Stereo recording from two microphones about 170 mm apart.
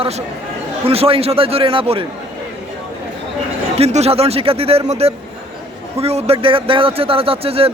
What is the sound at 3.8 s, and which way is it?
Speech, 40° right (ahead or behind).